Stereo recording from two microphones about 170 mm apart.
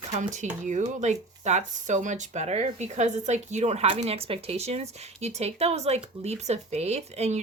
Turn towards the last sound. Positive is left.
turn(degrees=-40)  # may be behind; listen again after turning